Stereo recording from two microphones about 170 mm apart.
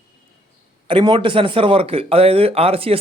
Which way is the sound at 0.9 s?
30° right (ahead or behind).